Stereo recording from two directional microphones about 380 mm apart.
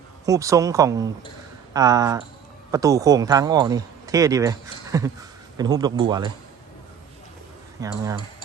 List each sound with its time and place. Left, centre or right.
0.3 s speech: centre
7.8 s speech: centre